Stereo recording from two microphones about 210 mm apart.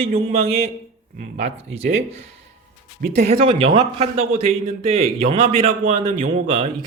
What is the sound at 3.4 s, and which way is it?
Speech, 25° right (ahead or behind).